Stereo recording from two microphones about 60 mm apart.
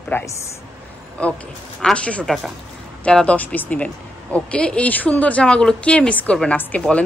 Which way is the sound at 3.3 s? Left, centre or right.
Left.